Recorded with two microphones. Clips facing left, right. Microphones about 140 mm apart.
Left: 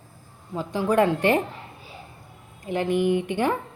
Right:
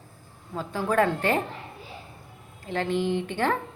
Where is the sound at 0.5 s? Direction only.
15° left (ahead or behind).